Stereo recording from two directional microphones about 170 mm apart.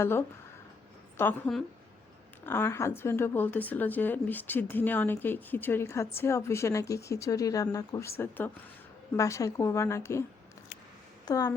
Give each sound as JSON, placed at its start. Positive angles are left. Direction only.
{"t": 0.0, "sound": "speech", "side_deg": 15}
{"t": 11.3, "sound": "speech", "side_deg": 20}